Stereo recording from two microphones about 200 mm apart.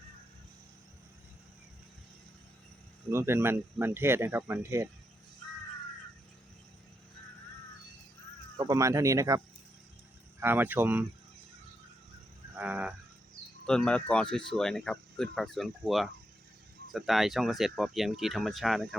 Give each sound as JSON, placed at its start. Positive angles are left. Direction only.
{"t": 3.1, "sound": "speech", "side_deg": -10}
{"t": 8.5, "sound": "speech", "side_deg": -15}
{"t": 10.4, "sound": "speech", "side_deg": -10}
{"t": 12.5, "sound": "frog", "side_deg": -5}
{"t": 13.7, "sound": "speech", "side_deg": 5}